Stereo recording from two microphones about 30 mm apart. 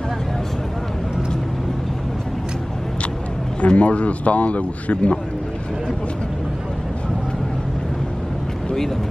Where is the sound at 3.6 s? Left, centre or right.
Left.